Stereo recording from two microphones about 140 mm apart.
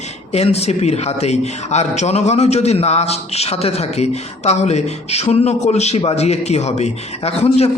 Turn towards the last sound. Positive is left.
turn(degrees=50)  # may be behind; listen again after turning